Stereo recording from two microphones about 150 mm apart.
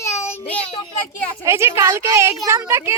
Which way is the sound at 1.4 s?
15° right (ahead or behind).